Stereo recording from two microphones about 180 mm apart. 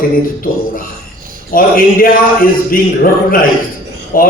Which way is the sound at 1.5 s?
55° left (ahead or behind).